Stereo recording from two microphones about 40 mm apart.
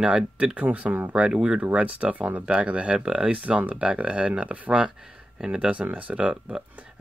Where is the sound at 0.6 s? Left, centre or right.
Right.